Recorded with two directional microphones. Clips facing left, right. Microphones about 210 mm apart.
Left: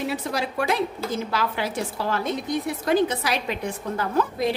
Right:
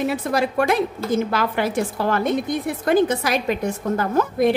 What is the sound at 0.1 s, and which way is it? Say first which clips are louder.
A woman's voice: right 6 dB; 55° right (ahead or behind).